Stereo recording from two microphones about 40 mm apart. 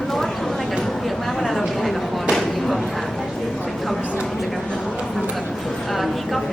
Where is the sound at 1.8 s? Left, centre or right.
Centre.